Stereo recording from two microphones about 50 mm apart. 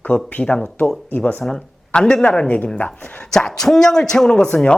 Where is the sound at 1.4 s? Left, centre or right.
Centre.